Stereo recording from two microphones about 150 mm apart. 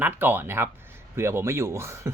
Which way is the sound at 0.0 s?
15° right (ahead or behind).